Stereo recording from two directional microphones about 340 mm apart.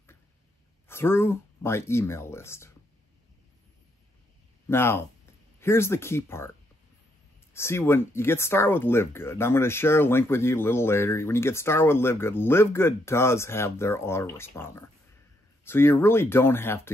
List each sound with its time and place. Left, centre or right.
0.8 s speech: centre
4.6 s speech: centre
7.5 s speech: centre